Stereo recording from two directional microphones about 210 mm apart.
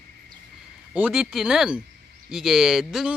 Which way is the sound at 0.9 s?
5° right (ahead or behind).